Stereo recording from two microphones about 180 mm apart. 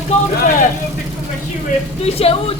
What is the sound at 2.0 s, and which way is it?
Speech, 35° left (ahead or behind).